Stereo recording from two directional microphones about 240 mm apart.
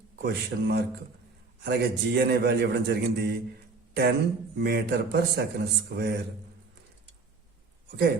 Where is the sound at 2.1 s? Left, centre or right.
Right.